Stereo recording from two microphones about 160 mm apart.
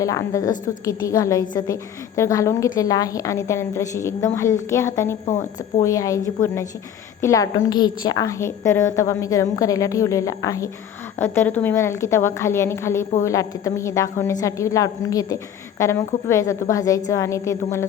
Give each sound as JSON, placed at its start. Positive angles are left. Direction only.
{"t": 0.0, "sound": "a woman's voice", "side_deg": 20}
{"t": 5.2, "sound": "speech", "side_deg": 45}
{"t": 5.8, "sound": "a woman's voice", "side_deg": 20}